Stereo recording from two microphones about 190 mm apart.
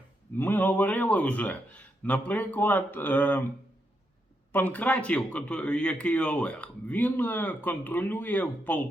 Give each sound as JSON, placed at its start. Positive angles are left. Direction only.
{"t": 0.3, "sound": "speech", "side_deg": 10}
{"t": 4.5, "sound": "speech", "side_deg": 10}